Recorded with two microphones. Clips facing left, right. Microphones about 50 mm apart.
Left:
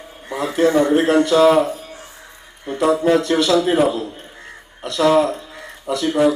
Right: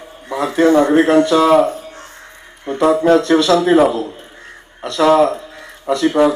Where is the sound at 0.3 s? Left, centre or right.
Right.